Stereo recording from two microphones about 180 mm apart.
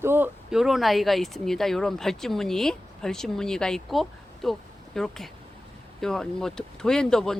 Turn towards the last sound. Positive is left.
turn(degrees=5)  # may be behind; listen again after turning